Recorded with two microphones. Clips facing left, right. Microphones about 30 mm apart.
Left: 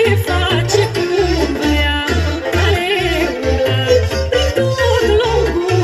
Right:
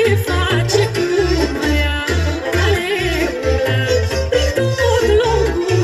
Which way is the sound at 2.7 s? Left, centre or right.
Left.